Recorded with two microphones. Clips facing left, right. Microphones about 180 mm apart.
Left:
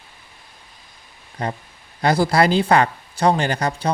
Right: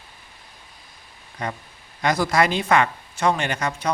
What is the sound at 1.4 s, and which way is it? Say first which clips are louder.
Speech: left 3 dB; 35° left (ahead or behind).